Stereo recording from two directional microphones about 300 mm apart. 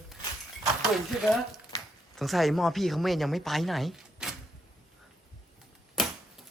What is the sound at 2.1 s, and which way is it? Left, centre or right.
Speech, centre.